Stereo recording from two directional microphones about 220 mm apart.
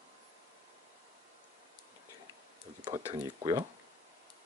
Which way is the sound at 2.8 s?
20° right (ahead or behind).